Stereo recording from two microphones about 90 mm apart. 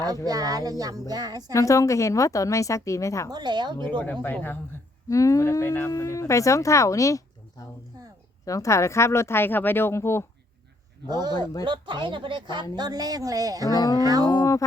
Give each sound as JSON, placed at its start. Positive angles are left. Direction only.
{"t": 0.3, "sound": "a woman's voice", "side_deg": -40}
{"t": 1.5, "sound": "speech", "side_deg": 35}
{"t": 3.2, "sound": "speech", "side_deg": -50}
{"t": 3.8, "sound": "speech", "side_deg": 20}
{"t": 5.0, "sound": "speech", "side_deg": 35}
{"t": 8.4, "sound": "speech", "side_deg": 35}
{"t": 11.1, "sound": "a woman's voice", "side_deg": -50}
{"t": 12.7, "sound": "a woman's voice", "side_deg": -50}
{"t": 13.7, "sound": "speech", "side_deg": 45}
{"t": 14.0, "sound": "speech", "side_deg": -40}